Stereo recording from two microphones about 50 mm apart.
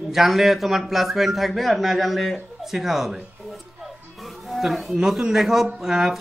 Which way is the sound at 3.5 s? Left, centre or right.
Centre.